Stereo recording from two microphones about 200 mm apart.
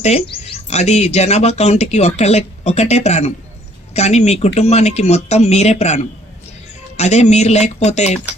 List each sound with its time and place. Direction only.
0.0 s speech: 30° left (ahead or behind)